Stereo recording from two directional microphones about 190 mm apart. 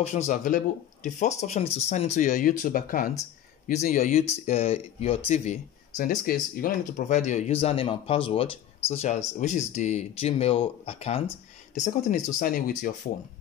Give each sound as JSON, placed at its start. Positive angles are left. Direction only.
{"t": 0.0, "sound": "speech", "side_deg": 40}